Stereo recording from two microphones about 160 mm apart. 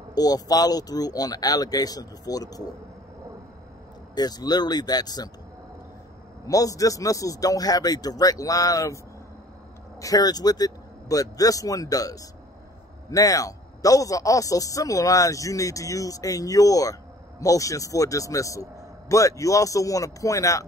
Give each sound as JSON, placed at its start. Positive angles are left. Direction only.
{"t": 0.1, "sound": "a man's voice", "side_deg": 25}
{"t": 4.1, "sound": "a man's voice", "side_deg": 25}
{"t": 6.4, "sound": "a man's voice", "side_deg": 20}